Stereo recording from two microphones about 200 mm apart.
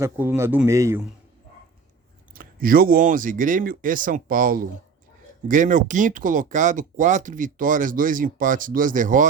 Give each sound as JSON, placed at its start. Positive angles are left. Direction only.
{"t": 0.0, "sound": "a man's voice", "side_deg": -10}
{"t": 2.3, "sound": "speech", "side_deg": -45}